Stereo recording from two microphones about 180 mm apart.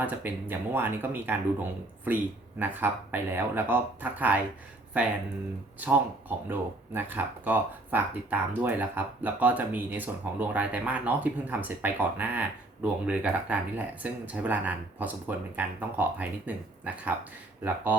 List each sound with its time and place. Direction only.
0.0 s speech: 10° right (ahead or behind)